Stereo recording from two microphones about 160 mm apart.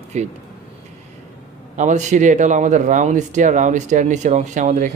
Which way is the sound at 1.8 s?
50° right (ahead or behind).